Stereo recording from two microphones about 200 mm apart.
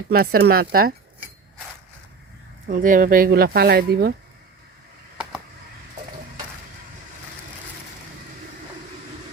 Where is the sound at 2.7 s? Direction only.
40° right (ahead or behind).